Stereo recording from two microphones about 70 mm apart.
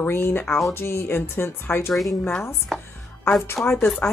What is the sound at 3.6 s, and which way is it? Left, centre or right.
Speech, left.